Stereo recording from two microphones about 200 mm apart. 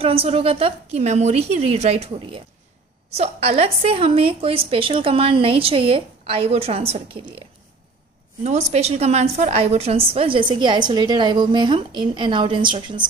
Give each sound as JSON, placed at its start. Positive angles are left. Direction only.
{"t": 0.0, "sound": "a woman's voice", "side_deg": -30}
{"t": 8.5, "sound": "a woman's voice", "side_deg": -35}